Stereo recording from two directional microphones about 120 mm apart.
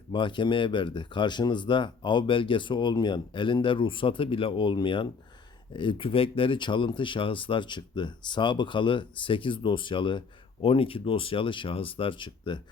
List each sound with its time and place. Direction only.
0.1 s speech: 40° left (ahead or behind)